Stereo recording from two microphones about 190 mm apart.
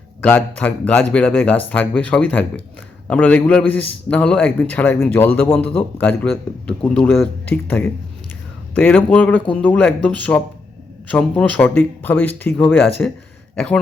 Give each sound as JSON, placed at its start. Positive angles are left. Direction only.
{"t": 0.3, "sound": "a man's voice", "side_deg": 10}